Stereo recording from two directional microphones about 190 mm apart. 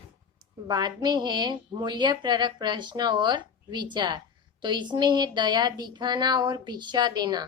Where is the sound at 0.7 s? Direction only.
25° right (ahead or behind).